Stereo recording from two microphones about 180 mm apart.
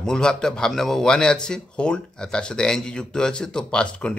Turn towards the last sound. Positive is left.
turn(degrees=5)  # may be behind; listen again after turning